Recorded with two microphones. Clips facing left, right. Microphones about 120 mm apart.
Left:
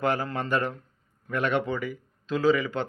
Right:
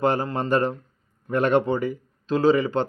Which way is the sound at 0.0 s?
25° right (ahead or behind).